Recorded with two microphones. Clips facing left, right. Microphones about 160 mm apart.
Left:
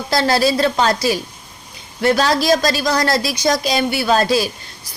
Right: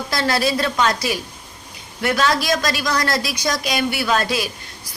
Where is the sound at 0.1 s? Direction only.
30° left (ahead or behind).